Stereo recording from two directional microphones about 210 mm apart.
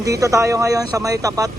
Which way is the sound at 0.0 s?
15° right (ahead or behind).